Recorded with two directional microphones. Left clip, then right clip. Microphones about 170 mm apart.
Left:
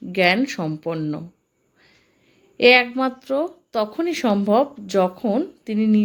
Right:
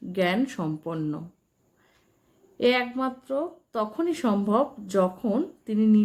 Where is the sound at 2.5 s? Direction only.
20° left (ahead or behind).